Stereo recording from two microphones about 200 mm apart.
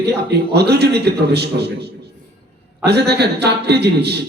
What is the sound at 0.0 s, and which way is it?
A man's voice, 55° right (ahead or behind).